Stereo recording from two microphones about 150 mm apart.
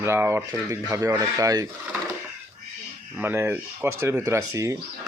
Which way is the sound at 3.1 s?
15° right (ahead or behind).